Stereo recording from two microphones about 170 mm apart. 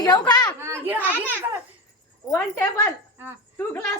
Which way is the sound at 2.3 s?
10° left (ahead or behind).